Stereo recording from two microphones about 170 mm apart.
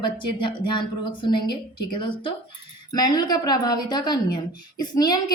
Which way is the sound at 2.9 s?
25° left (ahead or behind).